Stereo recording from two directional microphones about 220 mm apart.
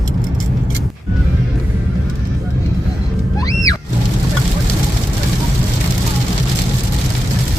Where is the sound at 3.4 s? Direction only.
15° left (ahead or behind).